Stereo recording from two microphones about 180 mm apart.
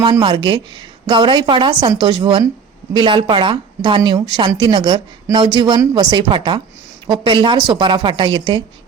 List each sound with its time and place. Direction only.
0.0 s speech: 25° right (ahead or behind)